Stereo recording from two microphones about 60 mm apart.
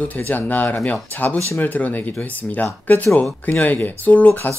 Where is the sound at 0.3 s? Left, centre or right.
Left.